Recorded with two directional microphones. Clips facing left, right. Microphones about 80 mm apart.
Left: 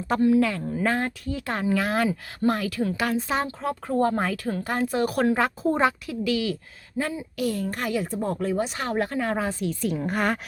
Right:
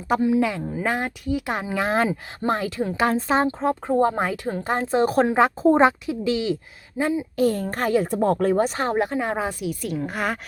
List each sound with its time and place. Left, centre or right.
0.1 s speech: centre
7.3 s speech: right
8.1 s speech: right
8.5 s speech: right
8.8 s speech: right; by 10.4 s centre